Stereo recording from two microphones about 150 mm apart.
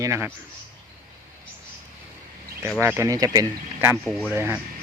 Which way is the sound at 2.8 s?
15° right (ahead or behind).